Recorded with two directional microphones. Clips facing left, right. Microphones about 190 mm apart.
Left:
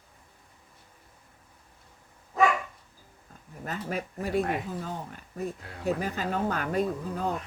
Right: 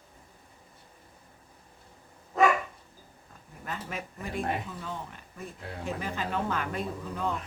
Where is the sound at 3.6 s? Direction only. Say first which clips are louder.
Left 4 dB; 40° left (ahead or behind).